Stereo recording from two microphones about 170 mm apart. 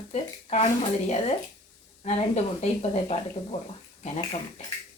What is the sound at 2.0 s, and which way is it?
Speech, 40° left (ahead or behind).